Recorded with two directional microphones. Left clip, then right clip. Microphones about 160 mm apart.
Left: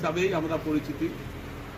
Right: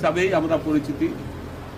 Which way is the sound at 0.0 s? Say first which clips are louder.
Right 7 dB; 30° right (ahead or behind).